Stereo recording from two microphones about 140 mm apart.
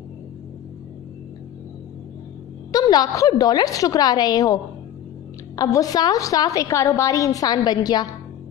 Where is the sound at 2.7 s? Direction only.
25° left (ahead or behind).